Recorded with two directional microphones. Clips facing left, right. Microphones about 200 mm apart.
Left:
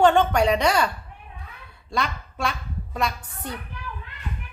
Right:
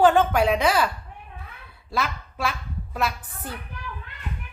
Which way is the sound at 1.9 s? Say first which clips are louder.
Even; 5° right (ahead or behind).